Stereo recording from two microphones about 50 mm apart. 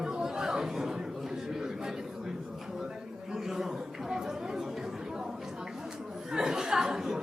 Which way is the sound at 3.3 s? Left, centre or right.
Centre.